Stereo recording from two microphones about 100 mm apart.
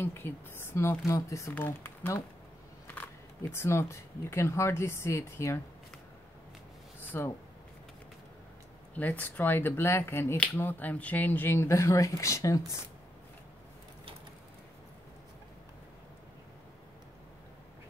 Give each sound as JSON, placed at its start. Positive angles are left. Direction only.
{"t": 0.0, "sound": "speech", "side_deg": 25}
{"t": 3.5, "sound": "speech", "side_deg": 25}
{"t": 7.0, "sound": "a sound", "side_deg": 20}
{"t": 8.9, "sound": "speech", "side_deg": 15}